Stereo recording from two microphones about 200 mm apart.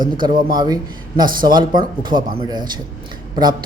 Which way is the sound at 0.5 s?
20° right (ahead or behind).